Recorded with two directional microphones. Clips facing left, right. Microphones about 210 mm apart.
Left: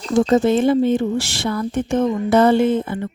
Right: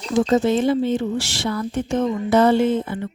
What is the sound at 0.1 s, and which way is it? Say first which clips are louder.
Speech: left 2 dB; 50° left (ahead or behind).